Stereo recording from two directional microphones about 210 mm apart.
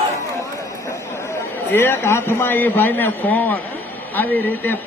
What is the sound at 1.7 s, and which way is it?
A man's voice, 10° left (ahead or behind).